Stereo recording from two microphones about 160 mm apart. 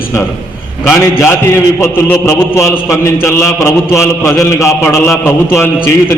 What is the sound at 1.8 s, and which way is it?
A man's voice, 15° left (ahead or behind).